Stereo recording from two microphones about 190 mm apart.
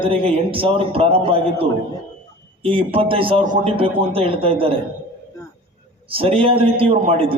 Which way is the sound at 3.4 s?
40° right (ahead or behind).